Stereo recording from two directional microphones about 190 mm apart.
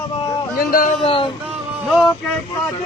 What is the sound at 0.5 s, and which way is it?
Speech, 50° left (ahead or behind).